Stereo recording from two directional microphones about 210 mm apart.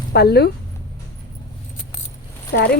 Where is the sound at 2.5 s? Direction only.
50° left (ahead or behind).